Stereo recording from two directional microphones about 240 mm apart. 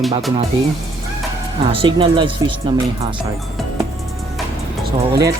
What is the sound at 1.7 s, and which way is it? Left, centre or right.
Speech, right.